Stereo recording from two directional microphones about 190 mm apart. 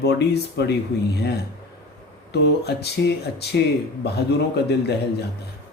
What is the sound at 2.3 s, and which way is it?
Speech, 60° left (ahead or behind).